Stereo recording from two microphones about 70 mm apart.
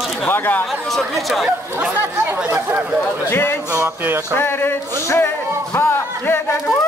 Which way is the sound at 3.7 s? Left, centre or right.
Right.